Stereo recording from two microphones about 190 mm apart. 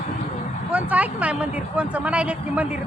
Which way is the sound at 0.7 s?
5° right (ahead or behind).